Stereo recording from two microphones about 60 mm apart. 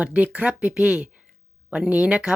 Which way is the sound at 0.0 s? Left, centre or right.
Right.